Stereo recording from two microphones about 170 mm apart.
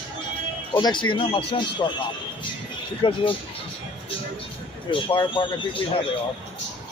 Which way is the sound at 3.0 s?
30° left (ahead or behind).